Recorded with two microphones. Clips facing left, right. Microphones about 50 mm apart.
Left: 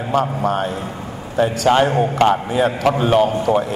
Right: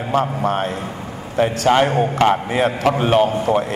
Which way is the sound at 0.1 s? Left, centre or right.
Right.